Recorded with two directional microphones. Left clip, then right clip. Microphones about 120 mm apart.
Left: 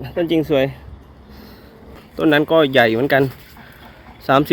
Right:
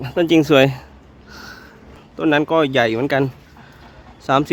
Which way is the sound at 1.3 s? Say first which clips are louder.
Right 7 dB; 50° right (ahead or behind).